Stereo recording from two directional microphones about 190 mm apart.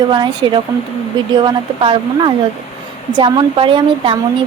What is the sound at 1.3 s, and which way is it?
A woman's voice, 25° right (ahead or behind).